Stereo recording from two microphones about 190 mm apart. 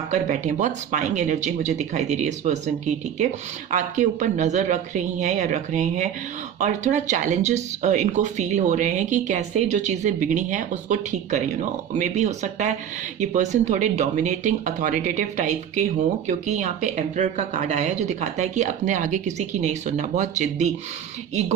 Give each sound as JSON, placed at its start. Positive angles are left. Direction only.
{"t": 0.1, "sound": "speech", "side_deg": -40}